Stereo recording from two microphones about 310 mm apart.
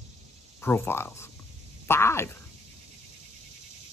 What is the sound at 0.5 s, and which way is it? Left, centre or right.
Speech, centre.